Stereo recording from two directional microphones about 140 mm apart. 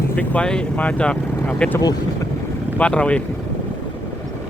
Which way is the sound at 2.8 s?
10° left (ahead or behind).